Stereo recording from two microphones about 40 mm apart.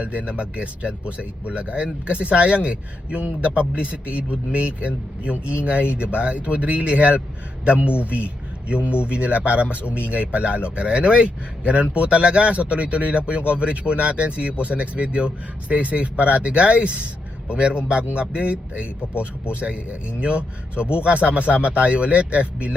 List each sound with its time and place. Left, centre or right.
0.0 s a man's voice: right